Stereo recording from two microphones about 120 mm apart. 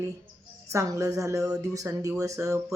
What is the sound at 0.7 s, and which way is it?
A woman's voice, 25° right (ahead or behind).